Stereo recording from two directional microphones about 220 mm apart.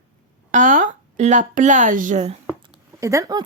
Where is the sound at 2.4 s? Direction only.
10° right (ahead or behind).